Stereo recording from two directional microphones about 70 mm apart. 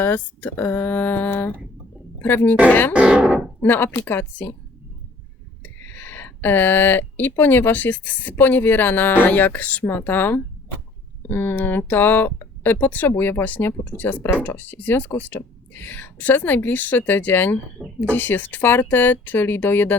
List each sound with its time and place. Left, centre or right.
0.0 s speech: left
2.9 s speech: centre
3.6 s speech: left
5.6 s a woman's voice: left